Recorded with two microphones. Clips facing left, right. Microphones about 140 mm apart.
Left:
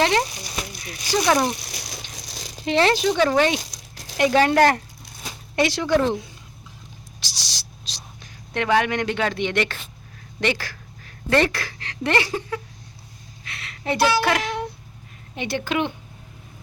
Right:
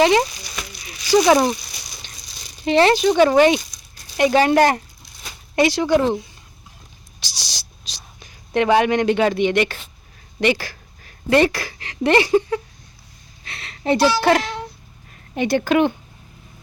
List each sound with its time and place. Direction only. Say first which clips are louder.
0.0 s speech: right 5 dB; 10° right (ahead or behind)
0.7 s a sound: left 2 dB; 50° left (ahead or behind)
1.5 s rattle: left 4 dB; 70° left (ahead or behind); by 2.6 s 90° left
2.6 s speech: right 4 dB; centre (ahead or behind)
3.6 s a sound: left 5 dB; 90° left
4.2 s speech: right 2 dB; 5° right (ahead or behind)
7.2 s whispering: right 2 dB; centre (ahead or behind)
8.5 s speech: right 5 dB; 20° right (ahead or behind)
13.4 s a sound: right 5 dB; 30° right (ahead or behind)
14.2 s a child's voice: right 5 dB; 30° right (ahead or behind)
14.4 s cat: left 2 dB; 15° left (ahead or behind)
15.4 s a woman's voice: right 7 dB; 45° right (ahead or behind)